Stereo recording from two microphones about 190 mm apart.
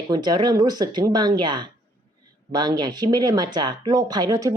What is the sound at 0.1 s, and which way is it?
A woman's voice, 20° right (ahead or behind).